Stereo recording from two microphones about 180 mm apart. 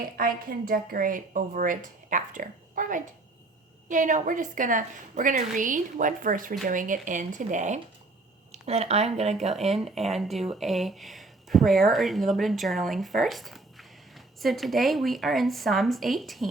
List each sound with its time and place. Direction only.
0.2 s a woman's voice: 55° right (ahead or behind); by 9.7 s 35° right (ahead or behind)
9.7 s speech: centre (ahead or behind)